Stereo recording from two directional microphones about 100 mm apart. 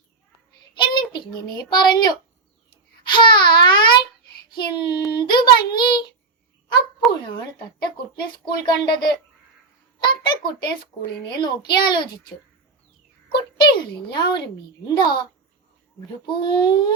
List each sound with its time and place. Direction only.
0.7 s a child's voice: 50° left (ahead or behind)
8.1 s a child's voice: 45° left (ahead or behind)
13.2 s a sound: 50° left (ahead or behind)
14.1 s a child's voice: 50° left (ahead or behind)